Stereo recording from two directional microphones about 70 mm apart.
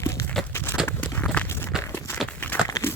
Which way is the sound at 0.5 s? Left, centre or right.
Left.